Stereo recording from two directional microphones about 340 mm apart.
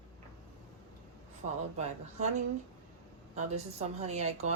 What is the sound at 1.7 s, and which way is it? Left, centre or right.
Speech, centre.